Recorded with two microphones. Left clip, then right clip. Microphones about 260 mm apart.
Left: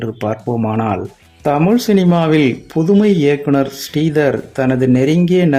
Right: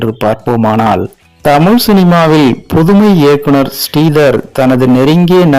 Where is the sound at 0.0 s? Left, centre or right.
Centre.